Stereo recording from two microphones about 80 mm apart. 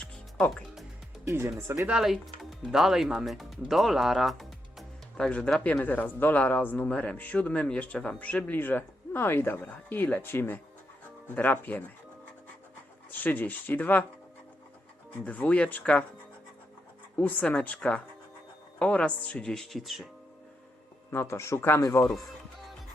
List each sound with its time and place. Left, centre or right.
0.0 s music: centre
1.2 s speech: right
1.9 s speech: centre
5.6 s speech: left
13.1 s speech: left
15.2 s speech: centre
17.2 s speech: centre
21.1 s speech: left
21.8 s speech: left